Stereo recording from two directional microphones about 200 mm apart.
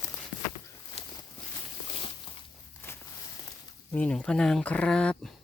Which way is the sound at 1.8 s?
25° left (ahead or behind).